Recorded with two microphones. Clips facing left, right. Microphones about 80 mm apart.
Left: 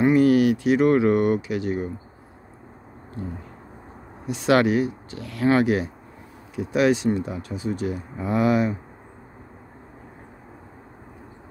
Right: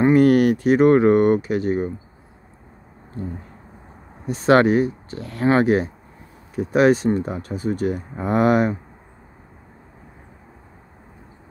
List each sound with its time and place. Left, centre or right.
0.0 s speech: right
4.3 s speech: right